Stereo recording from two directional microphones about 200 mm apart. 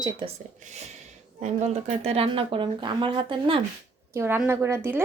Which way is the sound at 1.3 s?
35° right (ahead or behind).